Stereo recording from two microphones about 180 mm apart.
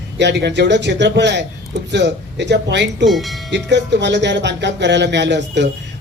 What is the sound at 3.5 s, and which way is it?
Speech, 75° right (ahead or behind).